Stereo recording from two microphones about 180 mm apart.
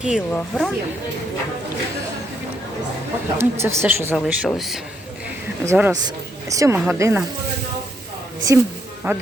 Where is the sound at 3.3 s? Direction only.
15° right (ahead or behind).